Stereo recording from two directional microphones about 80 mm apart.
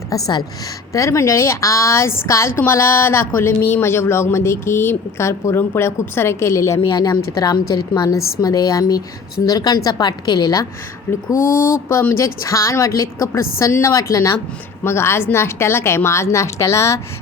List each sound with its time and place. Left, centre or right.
0.1 s a woman's voice: left
11.1 s speech: left